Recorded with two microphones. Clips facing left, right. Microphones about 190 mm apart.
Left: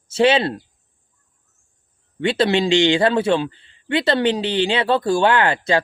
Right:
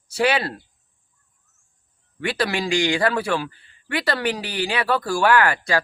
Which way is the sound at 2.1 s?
25° left (ahead or behind).